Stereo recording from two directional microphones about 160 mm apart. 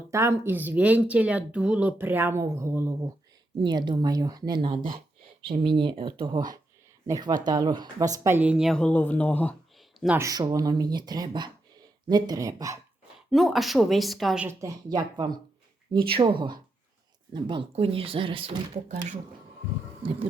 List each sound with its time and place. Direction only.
0.1 s speech: 15° right (ahead or behind)
3.6 s speech: 30° right (ahead or behind); by 9.6 s 10° left (ahead or behind)
10.2 s speech: 25° right (ahead or behind)
13.3 s speech: centre (ahead or behind)
14.4 s speech: 20° right (ahead or behind)